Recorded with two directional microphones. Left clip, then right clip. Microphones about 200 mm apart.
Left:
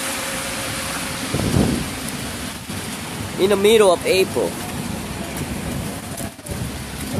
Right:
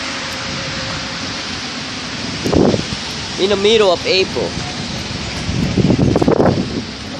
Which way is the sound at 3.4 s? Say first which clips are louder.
Right 1 dB; 5° left (ahead or behind).